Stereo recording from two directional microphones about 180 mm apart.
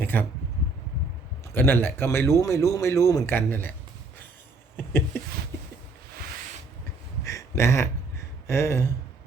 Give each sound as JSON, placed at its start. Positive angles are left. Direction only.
{"t": 0.0, "sound": "speech", "side_deg": 10}
{"t": 1.5, "sound": "a man's voice", "side_deg": 10}
{"t": 7.3, "sound": "a sound", "side_deg": 15}
{"t": 8.4, "sound": "a man's voice", "side_deg": 15}